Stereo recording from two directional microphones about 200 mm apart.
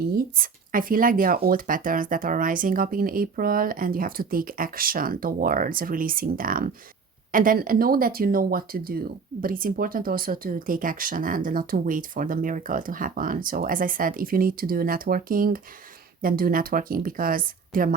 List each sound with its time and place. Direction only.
0.3 s speech: 45° right (ahead or behind)